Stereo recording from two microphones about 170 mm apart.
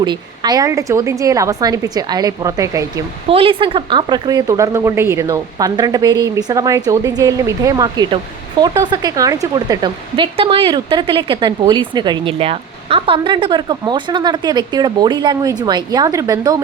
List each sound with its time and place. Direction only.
0.0 s speech: 25° right (ahead or behind)
3.2 s speech: 35° right (ahead or behind)